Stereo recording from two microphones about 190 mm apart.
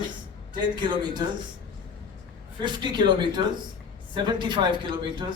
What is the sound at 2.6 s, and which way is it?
A man's voice, 25° right (ahead or behind).